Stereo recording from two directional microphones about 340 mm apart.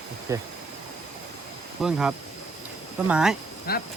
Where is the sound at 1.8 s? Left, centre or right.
Centre.